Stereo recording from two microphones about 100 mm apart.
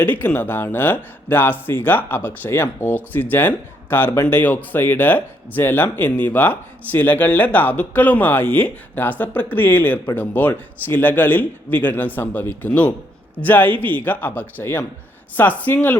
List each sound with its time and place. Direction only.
0.0 s a man's voice: 20° left (ahead or behind)